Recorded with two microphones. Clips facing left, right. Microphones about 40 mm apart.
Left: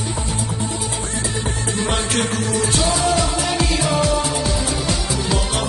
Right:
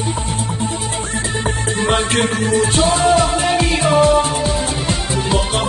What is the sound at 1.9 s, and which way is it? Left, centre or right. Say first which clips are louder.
Music: right 6 dB; right.